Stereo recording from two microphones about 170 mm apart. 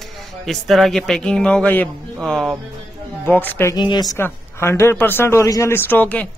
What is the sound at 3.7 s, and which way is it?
Speech, 25° left (ahead or behind).